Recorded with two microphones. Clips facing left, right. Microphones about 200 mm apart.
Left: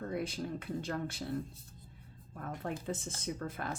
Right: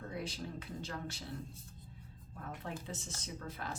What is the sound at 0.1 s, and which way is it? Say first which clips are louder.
A woman's voice: left 5 dB; 55° left (ahead or behind).